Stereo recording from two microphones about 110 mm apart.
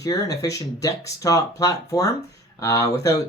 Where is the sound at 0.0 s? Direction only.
30° left (ahead or behind).